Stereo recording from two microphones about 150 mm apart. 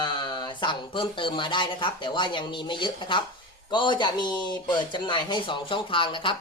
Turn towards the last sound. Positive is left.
turn(degrees=35)  # may be behind; listen again after turning